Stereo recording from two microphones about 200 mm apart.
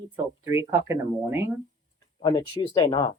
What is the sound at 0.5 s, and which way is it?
Speech, 15° right (ahead or behind).